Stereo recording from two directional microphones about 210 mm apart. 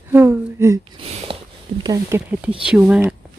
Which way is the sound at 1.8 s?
15° right (ahead or behind).